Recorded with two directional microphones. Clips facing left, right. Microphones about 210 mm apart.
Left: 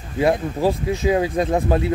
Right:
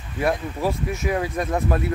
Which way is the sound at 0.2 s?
25° left (ahead or behind).